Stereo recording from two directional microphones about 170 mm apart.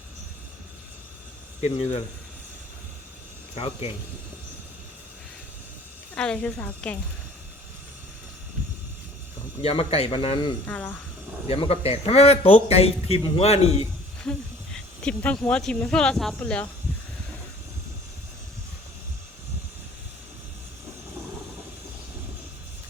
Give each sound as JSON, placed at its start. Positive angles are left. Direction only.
{"t": 1.6, "sound": "a man's voice", "side_deg": 40}
{"t": 3.5, "sound": "a man's voice", "side_deg": 40}
{"t": 6.1, "sound": "a woman's voice", "side_deg": 5}
{"t": 9.6, "sound": "a man's voice", "side_deg": 35}
{"t": 10.7, "sound": "a woman's voice", "side_deg": 10}
{"t": 11.4, "sound": "a man's voice", "side_deg": 35}
{"t": 14.3, "sound": "speech", "side_deg": 5}